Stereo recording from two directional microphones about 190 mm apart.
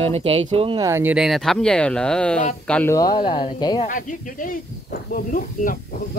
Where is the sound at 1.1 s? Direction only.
Centre (ahead or behind); by 3.8 s 25° left (ahead or behind).